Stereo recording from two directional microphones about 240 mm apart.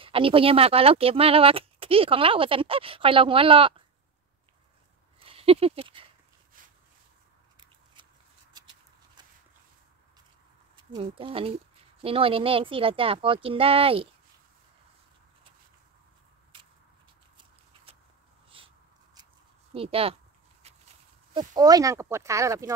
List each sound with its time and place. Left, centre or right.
0.0 s speech: right
5.2 s speech: right
7.6 s scissors: centre
8.5 s a sound: centre
10.8 s speech: right
18.5 s a sound: right
19.7 s speech: right
21.3 s speech: centre